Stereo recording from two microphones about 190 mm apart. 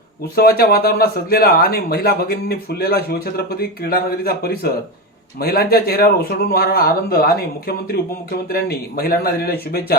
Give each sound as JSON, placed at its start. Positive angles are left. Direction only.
{"t": 0.3, "sound": "speech", "side_deg": 55}
{"t": 8.4, "sound": "speech", "side_deg": 55}